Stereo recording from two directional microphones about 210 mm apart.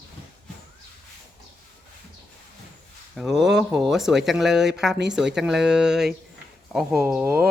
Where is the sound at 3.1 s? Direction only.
Centre (ahead or behind).